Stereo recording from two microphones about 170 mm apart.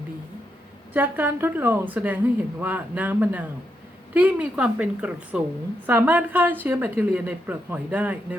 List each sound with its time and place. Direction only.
0.9 s a woman's voice: 10° right (ahead or behind)